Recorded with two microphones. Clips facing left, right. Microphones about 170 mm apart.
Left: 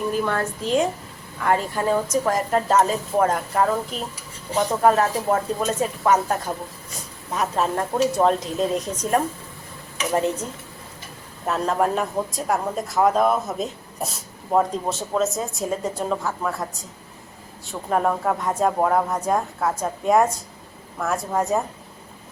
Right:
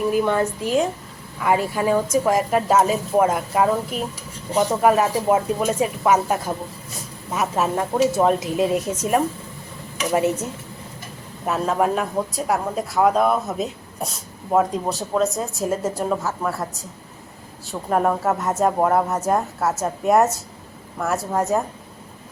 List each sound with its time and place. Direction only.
0.1 s speech: 15° right (ahead or behind)
11.4 s speech: 5° right (ahead or behind)
17.7 s speech: 5° right (ahead or behind)